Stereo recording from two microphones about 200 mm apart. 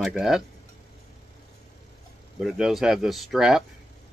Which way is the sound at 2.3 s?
Centre (ahead or behind).